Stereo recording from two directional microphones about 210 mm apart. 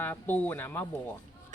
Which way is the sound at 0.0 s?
10° left (ahead or behind).